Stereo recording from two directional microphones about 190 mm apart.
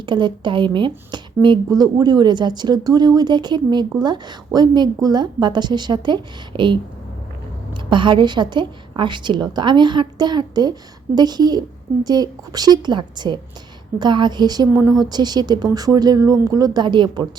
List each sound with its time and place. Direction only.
0.0 s speech: 25° right (ahead or behind)
7.9 s speech: 25° right (ahead or behind)